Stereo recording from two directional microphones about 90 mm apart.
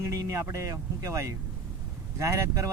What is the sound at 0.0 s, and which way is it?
Speech, 35° right (ahead or behind).